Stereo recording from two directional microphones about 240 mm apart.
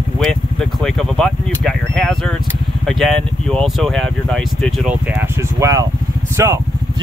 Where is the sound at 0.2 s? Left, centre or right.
Centre.